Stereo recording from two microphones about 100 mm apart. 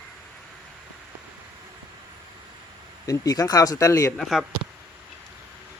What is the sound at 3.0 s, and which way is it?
Speech, 35° left (ahead or behind).